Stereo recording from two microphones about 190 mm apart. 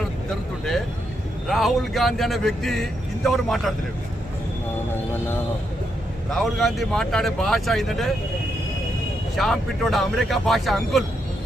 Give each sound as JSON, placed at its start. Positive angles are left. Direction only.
{"t": 1.5, "sound": "speech", "side_deg": 0}
{"t": 6.3, "sound": "speech", "side_deg": 0}
{"t": 9.3, "sound": "speech", "side_deg": 0}